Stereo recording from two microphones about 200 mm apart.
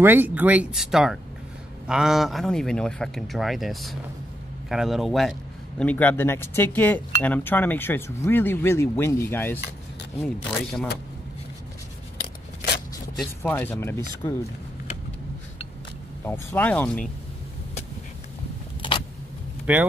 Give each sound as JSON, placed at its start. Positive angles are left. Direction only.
{"t": 0.0, "sound": "speech", "side_deg": -10}
{"t": 13.4, "sound": "speech", "side_deg": 10}
{"t": 16.3, "sound": "speech", "side_deg": 10}
{"t": 18.8, "sound": "vehicle", "side_deg": 25}
{"t": 19.7, "sound": "speech", "side_deg": -10}